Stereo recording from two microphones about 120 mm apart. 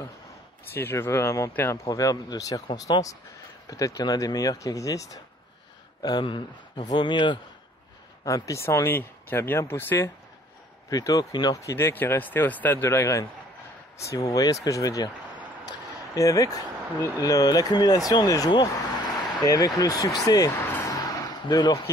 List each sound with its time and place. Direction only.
0.7 s speech: 20° left (ahead or behind)
1.9 s speech: 30° left (ahead or behind)
6.0 s speech: 40° left (ahead or behind)
8.3 s speech: 25° left (ahead or behind)
10.9 s speech: 30° left (ahead or behind)
16.2 s speech: 25° left (ahead or behind)
20.6 s vehicle: 20° left (ahead or behind)